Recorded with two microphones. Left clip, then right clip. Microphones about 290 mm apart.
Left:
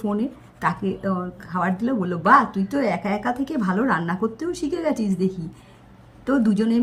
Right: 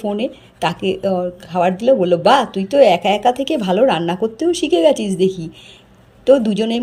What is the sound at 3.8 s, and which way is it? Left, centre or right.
Speech, right.